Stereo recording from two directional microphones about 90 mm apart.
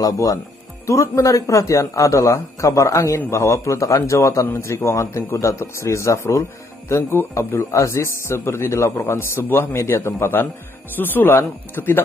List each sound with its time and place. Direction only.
0.0 s a man's voice: 40° left (ahead or behind); by 12.0 s 25° left (ahead or behind)